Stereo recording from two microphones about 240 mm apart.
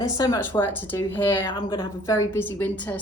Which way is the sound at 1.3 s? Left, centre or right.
Centre.